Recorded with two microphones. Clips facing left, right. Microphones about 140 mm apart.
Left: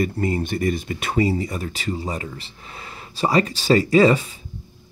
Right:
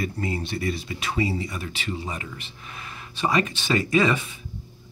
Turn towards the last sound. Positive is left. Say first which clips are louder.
# left 6 dB
turn(degrees=35)  # may be behind; listen again after turning